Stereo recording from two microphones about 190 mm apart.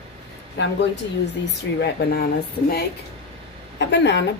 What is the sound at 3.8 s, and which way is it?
Speech, 70° left (ahead or behind).